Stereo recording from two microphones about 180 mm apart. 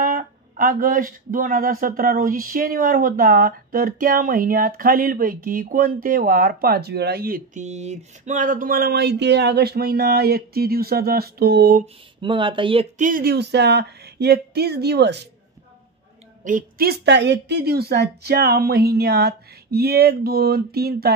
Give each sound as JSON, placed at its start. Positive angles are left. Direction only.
{"t": 0.0, "sound": "speech", "side_deg": -50}
{"t": 11.8, "sound": "speech", "side_deg": -25}
{"t": 12.9, "sound": "a woman's voice", "side_deg": -50}
{"t": 16.4, "sound": "a woman's voice", "side_deg": -50}